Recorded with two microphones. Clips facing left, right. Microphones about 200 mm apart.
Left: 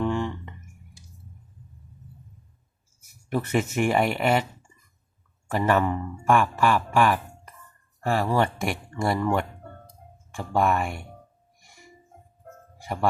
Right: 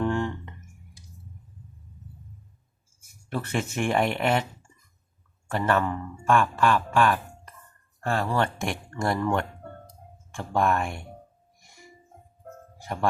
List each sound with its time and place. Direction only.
0.0 s a sound: centre (ahead or behind)
3.2 s speech: 15° left (ahead or behind)
5.5 s speech: 15° left (ahead or behind)
10.6 s speech: 5° left (ahead or behind)